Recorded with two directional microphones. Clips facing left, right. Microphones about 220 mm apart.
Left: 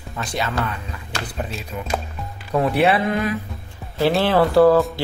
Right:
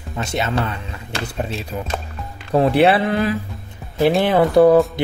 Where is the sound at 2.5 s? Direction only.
30° right (ahead or behind).